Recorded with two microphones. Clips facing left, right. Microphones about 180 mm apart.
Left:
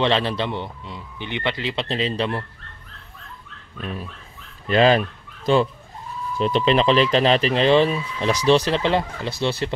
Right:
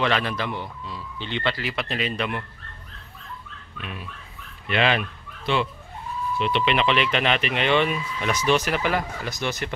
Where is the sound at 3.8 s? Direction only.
35° left (ahead or behind).